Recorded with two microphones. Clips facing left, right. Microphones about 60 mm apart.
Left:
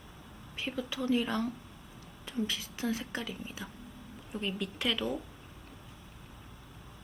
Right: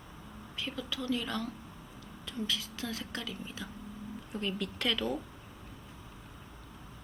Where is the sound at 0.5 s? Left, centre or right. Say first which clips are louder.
Left 2 dB; left; by 5.2 s centre.